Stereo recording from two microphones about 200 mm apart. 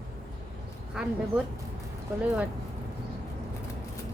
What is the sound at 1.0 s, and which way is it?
Speech, 5° right (ahead or behind).